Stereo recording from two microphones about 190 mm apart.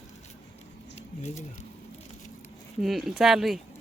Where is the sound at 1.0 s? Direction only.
35° left (ahead or behind).